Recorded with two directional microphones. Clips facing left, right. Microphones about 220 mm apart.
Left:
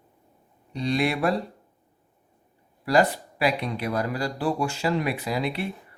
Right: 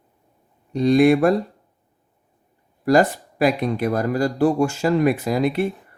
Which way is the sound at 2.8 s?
45° right (ahead or behind).